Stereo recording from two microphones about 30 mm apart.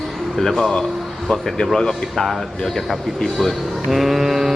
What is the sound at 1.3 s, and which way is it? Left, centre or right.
Speech, left.